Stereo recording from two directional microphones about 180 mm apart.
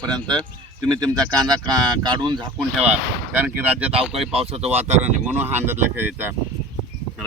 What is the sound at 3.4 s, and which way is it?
Speech, 10° right (ahead or behind).